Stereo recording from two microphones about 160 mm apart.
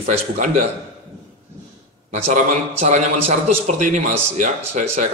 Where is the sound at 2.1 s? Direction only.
45° right (ahead or behind).